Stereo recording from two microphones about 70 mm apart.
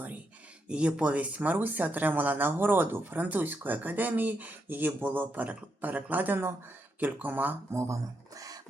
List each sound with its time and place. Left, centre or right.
0.7 s speech: centre
7.7 s speech: right
8.4 s music: right